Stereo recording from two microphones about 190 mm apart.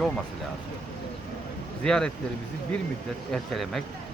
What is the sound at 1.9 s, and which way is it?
Speech, 5° left (ahead or behind).